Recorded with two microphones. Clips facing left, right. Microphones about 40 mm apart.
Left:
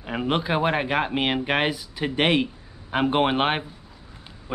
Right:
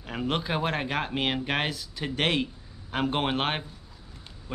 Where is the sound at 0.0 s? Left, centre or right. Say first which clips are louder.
Left 5 dB; centre.